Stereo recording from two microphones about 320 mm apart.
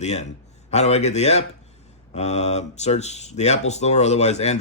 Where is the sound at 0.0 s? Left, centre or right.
Left.